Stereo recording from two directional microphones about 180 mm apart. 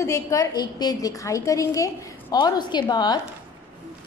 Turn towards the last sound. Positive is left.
turn(degrees=25)  # may be behind; listen again after turning